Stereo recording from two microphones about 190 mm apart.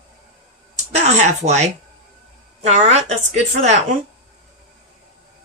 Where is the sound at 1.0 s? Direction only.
35° right (ahead or behind).